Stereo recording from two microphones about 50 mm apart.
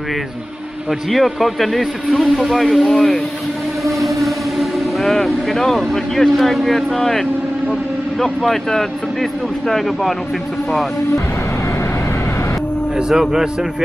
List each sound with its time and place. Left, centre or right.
0.8 s speech: centre
4.2 s speech: centre
12.9 s speech: centre